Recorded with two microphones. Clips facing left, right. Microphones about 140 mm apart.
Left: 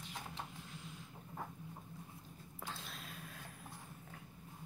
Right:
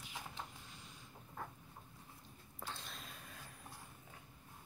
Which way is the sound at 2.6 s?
Centre (ahead or behind).